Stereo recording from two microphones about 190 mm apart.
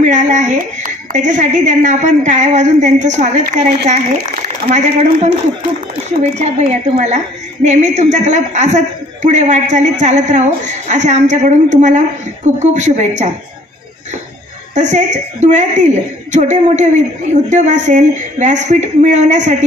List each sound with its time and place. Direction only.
0.0 s a child's voice: 40° right (ahead or behind)
6.3 s a woman's voice: 35° right (ahead or behind)
14.7 s a woman's voice: 40° right (ahead or behind)